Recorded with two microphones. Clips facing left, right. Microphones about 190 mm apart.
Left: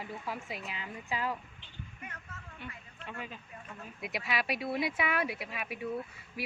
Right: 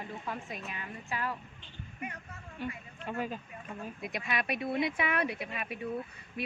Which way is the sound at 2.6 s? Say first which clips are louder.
Right 9 dB; 40° right (ahead or behind).